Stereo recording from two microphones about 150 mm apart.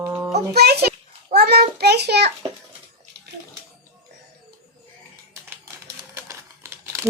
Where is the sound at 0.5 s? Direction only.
90° right.